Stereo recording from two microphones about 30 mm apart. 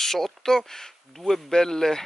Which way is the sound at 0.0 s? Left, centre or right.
Centre.